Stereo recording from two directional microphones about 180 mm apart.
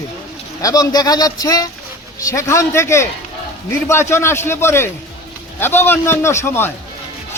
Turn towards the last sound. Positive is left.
turn(degrees=15)  # may be behind; listen again after turning